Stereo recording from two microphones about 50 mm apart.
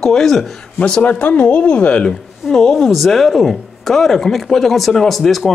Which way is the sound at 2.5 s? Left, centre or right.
Centre.